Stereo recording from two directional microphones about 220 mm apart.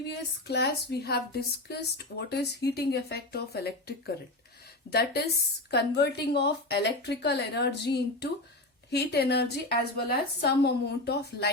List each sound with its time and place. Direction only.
0.1 s speech: 50° left (ahead or behind)